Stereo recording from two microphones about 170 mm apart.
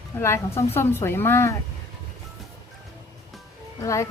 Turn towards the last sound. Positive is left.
turn(degrees=20)  # may be behind; listen again after turning